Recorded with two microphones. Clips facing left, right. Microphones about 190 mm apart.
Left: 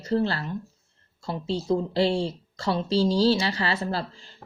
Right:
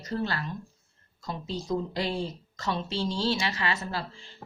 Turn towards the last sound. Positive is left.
turn(degrees=35)  # may be behind; listen again after turning